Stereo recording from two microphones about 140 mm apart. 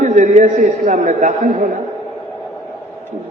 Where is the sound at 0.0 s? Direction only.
60° right (ahead or behind).